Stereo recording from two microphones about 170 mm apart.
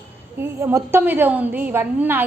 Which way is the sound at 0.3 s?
15° right (ahead or behind).